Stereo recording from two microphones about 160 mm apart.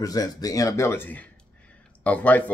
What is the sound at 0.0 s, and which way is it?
A man's voice, 25° left (ahead or behind).